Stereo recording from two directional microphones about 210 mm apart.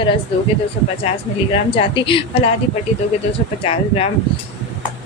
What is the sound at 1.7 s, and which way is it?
Speech, 25° left (ahead or behind).